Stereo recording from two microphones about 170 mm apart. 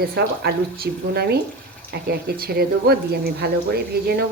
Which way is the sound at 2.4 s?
65° right (ahead or behind).